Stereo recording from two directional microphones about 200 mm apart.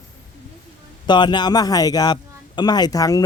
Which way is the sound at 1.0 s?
25° left (ahead or behind).